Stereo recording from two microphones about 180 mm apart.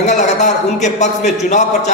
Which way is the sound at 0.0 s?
40° left (ahead or behind).